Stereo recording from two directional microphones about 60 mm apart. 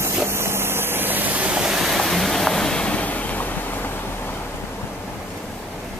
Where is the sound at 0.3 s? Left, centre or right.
Right.